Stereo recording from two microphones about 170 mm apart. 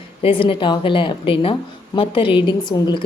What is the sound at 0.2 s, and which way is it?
A woman's voice, 30° left (ahead or behind).